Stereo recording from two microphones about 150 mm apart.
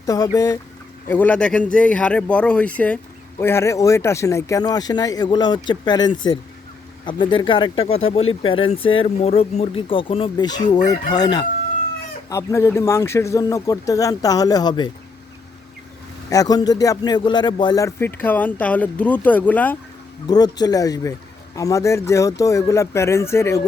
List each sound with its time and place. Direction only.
0.0 s speech: 25° left (ahead or behind)
1.0 s speech: 10° left (ahead or behind); by 14.8 s 30° left (ahead or behind)
16.3 s speech: 25° left (ahead or behind)
20.2 s speech: 25° left (ahead or behind)